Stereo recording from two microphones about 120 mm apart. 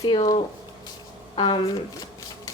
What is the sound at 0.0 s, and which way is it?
Speech, 35° left (ahead or behind).